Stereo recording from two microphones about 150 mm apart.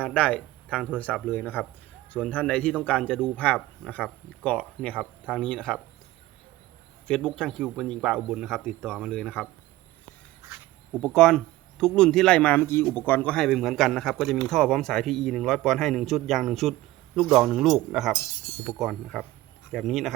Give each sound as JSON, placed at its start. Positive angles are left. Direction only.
{"t": 0.0, "sound": "a man's voice", "side_deg": 10}
{"t": 7.1, "sound": "a man's voice", "side_deg": 5}
{"t": 10.9, "sound": "a man's voice", "side_deg": 5}
{"t": 18.2, "sound": "speech", "side_deg": 20}
{"t": 18.6, "sound": "a man's voice", "side_deg": 0}